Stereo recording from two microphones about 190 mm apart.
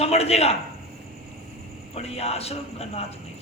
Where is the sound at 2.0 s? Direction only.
35° left (ahead or behind).